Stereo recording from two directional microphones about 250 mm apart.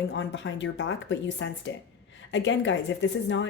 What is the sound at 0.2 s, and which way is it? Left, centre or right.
Speech, left.